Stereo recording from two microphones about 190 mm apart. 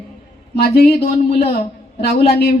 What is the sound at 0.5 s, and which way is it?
Speech, 55° left (ahead or behind).